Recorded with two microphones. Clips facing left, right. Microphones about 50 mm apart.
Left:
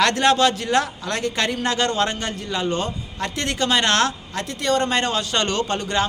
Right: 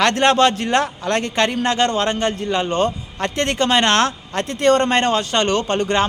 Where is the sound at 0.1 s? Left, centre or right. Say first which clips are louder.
Right 3 dB; right.